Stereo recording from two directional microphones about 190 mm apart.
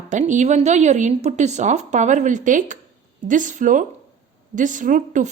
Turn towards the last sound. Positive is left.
turn(degrees=-45)  # may be behind; listen again after turning